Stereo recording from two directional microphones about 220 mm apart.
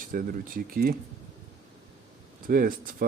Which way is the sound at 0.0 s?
40° right (ahead or behind).